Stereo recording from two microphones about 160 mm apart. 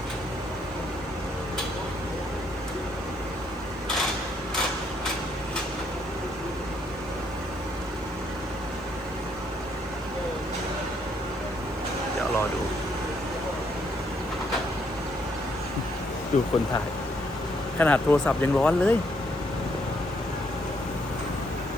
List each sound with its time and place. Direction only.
16.3 s speech: 45° left (ahead or behind)
17.7 s speech: 10° left (ahead or behind)